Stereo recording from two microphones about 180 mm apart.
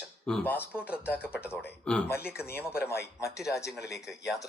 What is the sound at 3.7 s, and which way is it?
Speech, 65° left (ahead or behind).